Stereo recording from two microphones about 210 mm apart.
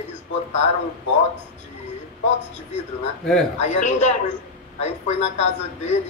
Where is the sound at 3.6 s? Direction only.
35° left (ahead or behind).